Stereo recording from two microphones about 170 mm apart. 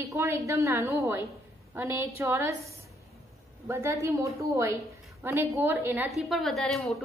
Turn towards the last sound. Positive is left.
turn(degrees=0)  # may be behind; listen again after turning